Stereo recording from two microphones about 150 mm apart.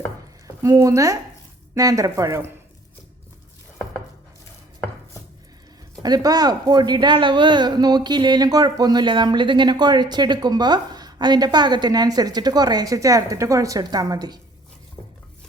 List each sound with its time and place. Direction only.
0.4 s speech: 20° right (ahead or behind)
6.0 s speech: 25° right (ahead or behind)